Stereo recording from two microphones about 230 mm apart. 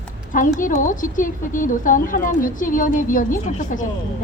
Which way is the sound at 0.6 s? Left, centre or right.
Left.